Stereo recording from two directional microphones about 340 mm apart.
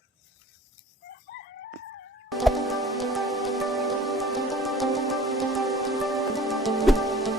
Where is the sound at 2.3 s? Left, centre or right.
Centre.